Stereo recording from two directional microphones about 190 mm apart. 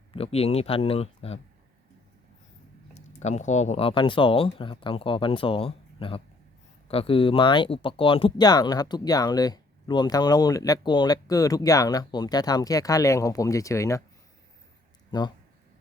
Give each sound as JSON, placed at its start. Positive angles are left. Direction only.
{"t": 0.1, "sound": "speech", "side_deg": 30}
{"t": 3.2, "sound": "speech", "side_deg": 40}